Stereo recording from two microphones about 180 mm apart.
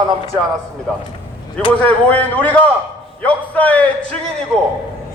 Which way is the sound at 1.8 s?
10° left (ahead or behind).